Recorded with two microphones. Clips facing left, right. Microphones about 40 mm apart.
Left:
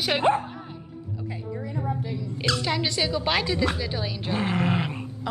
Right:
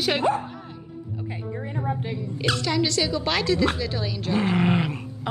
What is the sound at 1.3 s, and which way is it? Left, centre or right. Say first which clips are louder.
Music: right 1 dB; right.